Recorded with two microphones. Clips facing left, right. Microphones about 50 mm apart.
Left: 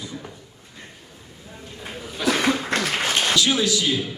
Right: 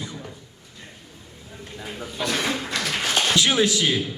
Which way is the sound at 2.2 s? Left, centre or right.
Centre.